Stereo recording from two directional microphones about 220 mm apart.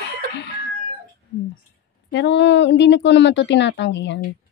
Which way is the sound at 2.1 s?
55° left (ahead or behind).